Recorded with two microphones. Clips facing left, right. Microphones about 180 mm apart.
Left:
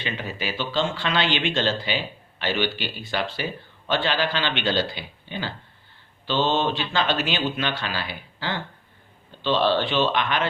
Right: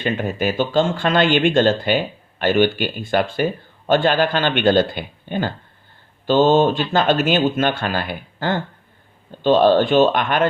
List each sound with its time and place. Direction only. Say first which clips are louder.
0.0 s speech: right 10 dB; 50° right (ahead or behind)